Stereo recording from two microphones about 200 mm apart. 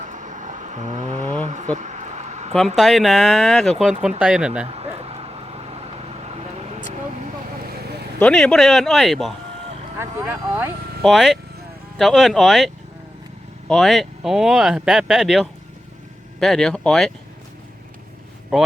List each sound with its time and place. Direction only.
0.0 s vehicle: 35° right (ahead or behind)
2.7 s speech: centre (ahead or behind)
4.6 s vehicle: 30° right (ahead or behind)
8.2 s speech: 5° left (ahead or behind)
10.0 s speech: 10° right (ahead or behind)
18.5 s speech: 5° right (ahead or behind)